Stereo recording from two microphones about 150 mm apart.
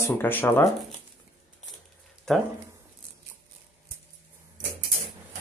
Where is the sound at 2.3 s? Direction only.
5° left (ahead or behind).